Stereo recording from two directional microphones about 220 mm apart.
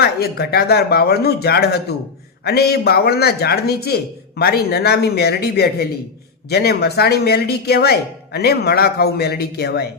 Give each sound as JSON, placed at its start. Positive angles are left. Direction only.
{"t": 0.0, "sound": "speech", "side_deg": 45}